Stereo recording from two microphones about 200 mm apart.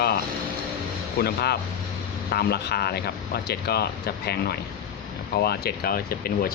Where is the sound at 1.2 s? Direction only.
50° left (ahead or behind).